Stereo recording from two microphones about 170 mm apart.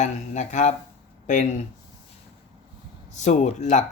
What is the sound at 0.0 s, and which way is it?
Speech, 45° left (ahead or behind).